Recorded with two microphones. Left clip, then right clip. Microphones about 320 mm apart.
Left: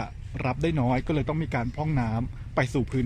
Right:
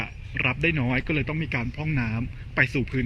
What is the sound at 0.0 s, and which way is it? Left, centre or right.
A man's voice, centre.